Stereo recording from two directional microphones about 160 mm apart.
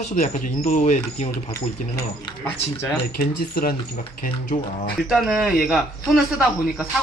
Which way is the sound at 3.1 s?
65° left (ahead or behind).